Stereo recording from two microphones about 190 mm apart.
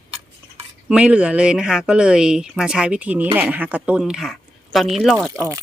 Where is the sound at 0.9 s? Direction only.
5° right (ahead or behind).